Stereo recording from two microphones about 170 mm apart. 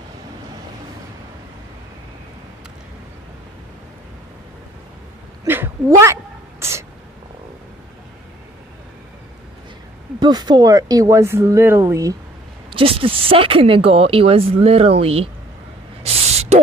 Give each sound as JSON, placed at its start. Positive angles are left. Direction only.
{"t": 5.4, "sound": "a sound", "side_deg": -15}
{"t": 10.2, "sound": "speech", "side_deg": -25}
{"t": 12.6, "sound": "speech", "side_deg": -35}
{"t": 16.0, "sound": "spray", "side_deg": -35}